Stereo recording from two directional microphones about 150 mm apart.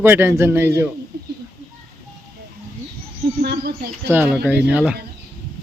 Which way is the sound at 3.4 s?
90° right.